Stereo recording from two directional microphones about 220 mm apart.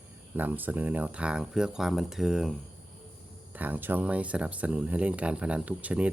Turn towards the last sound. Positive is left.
turn(degrees=-5)  # may be behind; listen again after turning